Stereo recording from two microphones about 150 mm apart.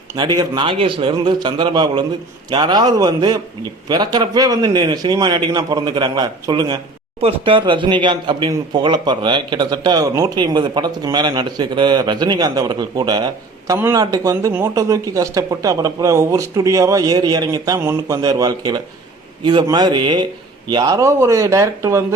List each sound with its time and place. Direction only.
0.2 s a man's voice: 30° right (ahead or behind)
7.2 s speech: 40° right (ahead or behind)
13.7 s a man's voice: 15° right (ahead or behind)